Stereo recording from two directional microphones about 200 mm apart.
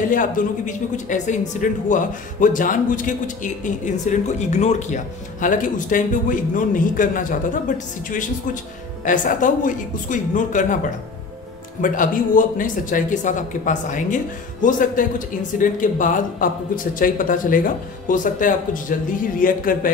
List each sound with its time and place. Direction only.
0.1 s speech: 40° left (ahead or behind)
11.8 s speech: 40° left (ahead or behind)